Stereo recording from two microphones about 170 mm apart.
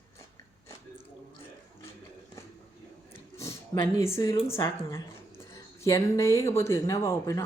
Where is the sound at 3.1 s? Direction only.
20° left (ahead or behind).